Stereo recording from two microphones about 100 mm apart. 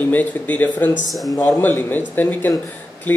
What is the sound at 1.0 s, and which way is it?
Speech, centre (ahead or behind).